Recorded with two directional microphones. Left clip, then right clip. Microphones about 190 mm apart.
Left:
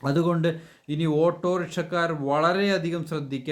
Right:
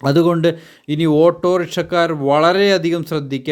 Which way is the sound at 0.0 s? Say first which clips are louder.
Right 10 dB; 45° right (ahead or behind).